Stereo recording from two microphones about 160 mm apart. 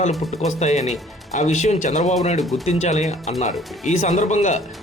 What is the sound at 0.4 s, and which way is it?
Speech, 45° left (ahead or behind).